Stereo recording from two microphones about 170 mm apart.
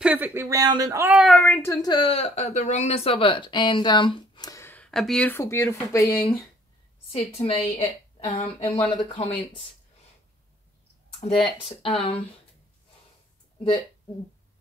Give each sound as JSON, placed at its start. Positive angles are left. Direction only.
{"t": 0.0, "sound": "speech", "side_deg": -10}
{"t": 1.0, "sound": "a woman's voice", "side_deg": -5}
{"t": 4.9, "sound": "speech", "side_deg": 5}
{"t": 7.3, "sound": "speech", "side_deg": 35}
{"t": 11.6, "sound": "speech", "side_deg": 30}